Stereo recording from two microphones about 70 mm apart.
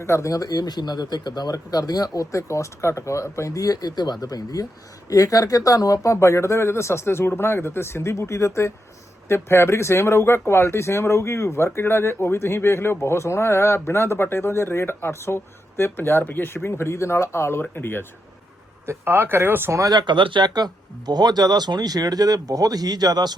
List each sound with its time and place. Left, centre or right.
0.0 s speech: left
2.3 s speech: left
18.9 s speech: right
19.9 s speech: right